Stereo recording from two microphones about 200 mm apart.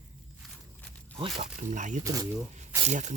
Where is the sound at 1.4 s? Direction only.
40° right (ahead or behind).